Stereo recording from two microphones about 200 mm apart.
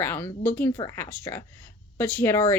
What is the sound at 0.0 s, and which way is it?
A woman's voice, 10° left (ahead or behind).